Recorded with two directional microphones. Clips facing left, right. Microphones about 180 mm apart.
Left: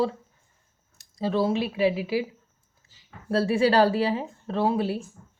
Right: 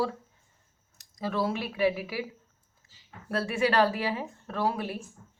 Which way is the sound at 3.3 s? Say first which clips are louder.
Left 6 dB; 30° left (ahead or behind).